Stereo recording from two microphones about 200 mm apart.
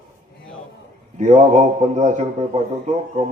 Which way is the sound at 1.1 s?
35° right (ahead or behind).